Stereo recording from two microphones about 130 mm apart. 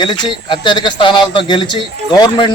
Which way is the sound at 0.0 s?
35° left (ahead or behind).